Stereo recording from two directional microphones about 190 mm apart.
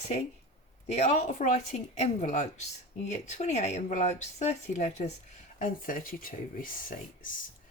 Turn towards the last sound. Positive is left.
turn(degrees=45)  # may be behind; listen again after turning